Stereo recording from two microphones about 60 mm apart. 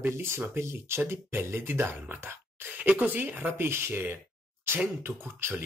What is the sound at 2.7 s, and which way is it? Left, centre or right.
Speech, right.